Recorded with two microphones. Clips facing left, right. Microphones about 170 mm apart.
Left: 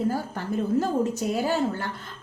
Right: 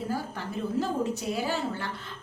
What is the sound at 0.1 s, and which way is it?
A woman's voice, 45° left (ahead or behind).